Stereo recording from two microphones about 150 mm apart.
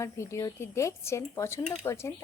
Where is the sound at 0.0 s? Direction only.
20° left (ahead or behind).